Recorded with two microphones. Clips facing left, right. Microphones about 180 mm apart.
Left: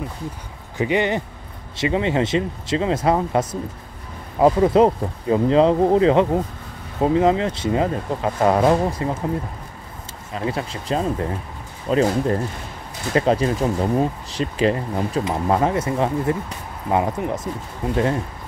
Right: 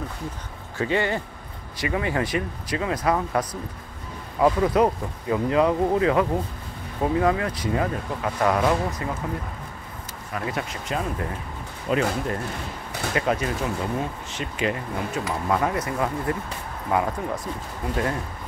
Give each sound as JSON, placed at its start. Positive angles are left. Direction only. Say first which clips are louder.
{"t": 0.7, "sound": "speech", "louder": "left 4 dB", "side_deg": 20}
{"t": 10.3, "sound": "speech", "louder": "left 4 dB", "side_deg": 30}